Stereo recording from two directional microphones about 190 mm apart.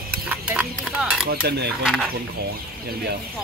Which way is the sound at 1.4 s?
60° right (ahead or behind).